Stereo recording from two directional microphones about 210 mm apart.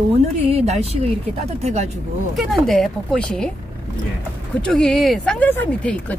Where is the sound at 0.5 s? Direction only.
30° right (ahead or behind).